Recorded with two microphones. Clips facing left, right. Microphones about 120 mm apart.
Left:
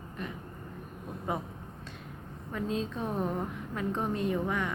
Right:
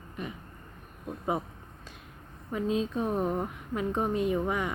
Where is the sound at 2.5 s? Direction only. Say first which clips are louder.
Right 4 dB; 10° right (ahead or behind).